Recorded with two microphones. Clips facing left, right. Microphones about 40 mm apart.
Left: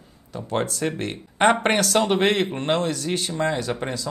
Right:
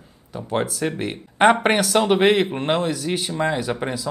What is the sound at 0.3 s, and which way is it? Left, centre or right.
Speech, centre.